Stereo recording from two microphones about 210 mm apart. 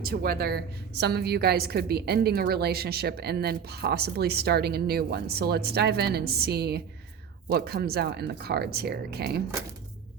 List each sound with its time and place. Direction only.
0.0 s a woman's voice: 45° right (ahead or behind)